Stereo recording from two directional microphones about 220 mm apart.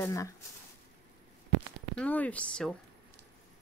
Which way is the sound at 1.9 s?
5° left (ahead or behind).